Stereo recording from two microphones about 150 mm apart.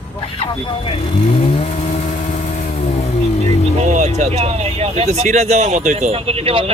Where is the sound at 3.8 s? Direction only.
55° right (ahead or behind).